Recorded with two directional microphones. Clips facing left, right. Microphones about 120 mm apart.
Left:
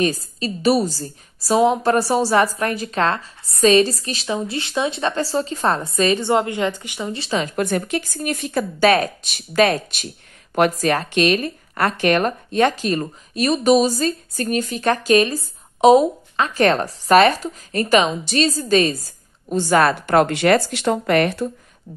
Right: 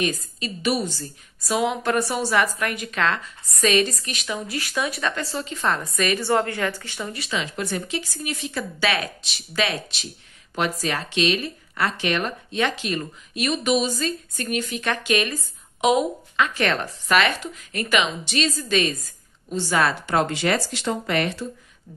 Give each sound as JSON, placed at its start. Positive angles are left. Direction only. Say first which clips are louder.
{"t": 0.0, "sound": "speech", "louder": "left 5 dB", "side_deg": 35}
{"t": 7.2, "sound": "speech", "louder": "left 6 dB", "side_deg": 35}
{"t": 7.4, "sound": "a woman's voice", "louder": "left 7 dB", "side_deg": 50}
{"t": 19.5, "sound": "a woman's voice", "louder": "left 6 dB", "side_deg": 50}